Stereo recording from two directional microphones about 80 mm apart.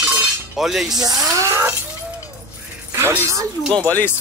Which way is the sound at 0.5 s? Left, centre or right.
Centre.